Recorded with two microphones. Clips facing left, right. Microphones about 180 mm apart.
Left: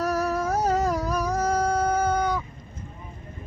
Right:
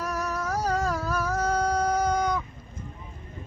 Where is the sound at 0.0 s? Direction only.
35° left (ahead or behind); by 2.4 s 5° left (ahead or behind).